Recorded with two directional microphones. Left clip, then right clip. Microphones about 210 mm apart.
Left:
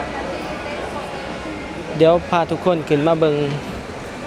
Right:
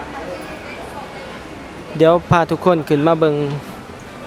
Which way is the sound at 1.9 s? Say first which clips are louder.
Right 2 dB; 25° right (ahead or behind).